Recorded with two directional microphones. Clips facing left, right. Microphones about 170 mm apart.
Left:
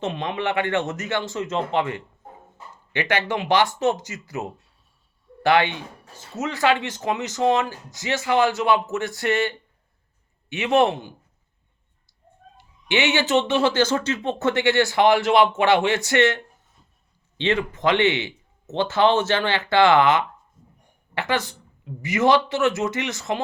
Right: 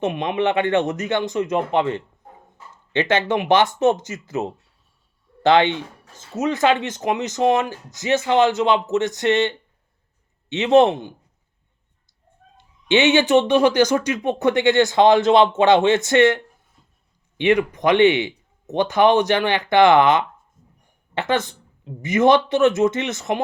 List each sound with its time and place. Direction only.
0.0 s speech: 20° right (ahead or behind)
12.5 s speech: 20° right (ahead or behind)